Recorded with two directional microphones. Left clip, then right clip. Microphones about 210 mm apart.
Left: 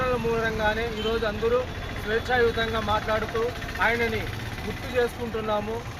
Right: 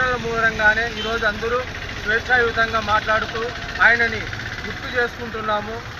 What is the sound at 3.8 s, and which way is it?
Speech, 15° left (ahead or behind).